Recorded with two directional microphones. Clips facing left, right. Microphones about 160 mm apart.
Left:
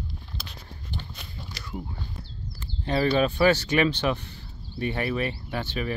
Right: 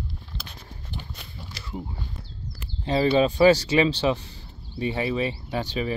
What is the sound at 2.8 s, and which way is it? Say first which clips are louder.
Speech: right 2 dB; 25° right (ahead or behind).